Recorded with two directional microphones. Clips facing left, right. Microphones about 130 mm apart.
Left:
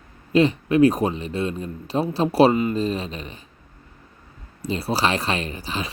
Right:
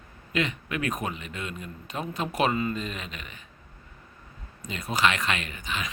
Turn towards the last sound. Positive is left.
turn(degrees=35)  # may be behind; listen again after turning